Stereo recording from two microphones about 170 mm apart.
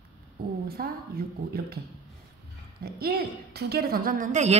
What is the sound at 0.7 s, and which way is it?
A woman's voice, 65° right (ahead or behind).